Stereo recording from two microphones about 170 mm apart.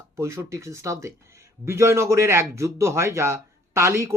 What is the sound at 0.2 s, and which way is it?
A man's voice, 15° right (ahead or behind).